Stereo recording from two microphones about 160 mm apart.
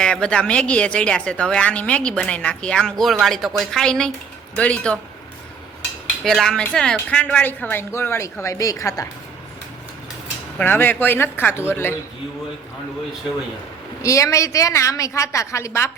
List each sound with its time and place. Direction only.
0.0 s speech: 5° left (ahead or behind)
6.2 s a woman's voice: 5° left (ahead or behind); by 9.0 s 20° left (ahead or behind)
10.6 s speech: 10° left (ahead or behind)
14.0 s a woman's voice: 20° left (ahead or behind)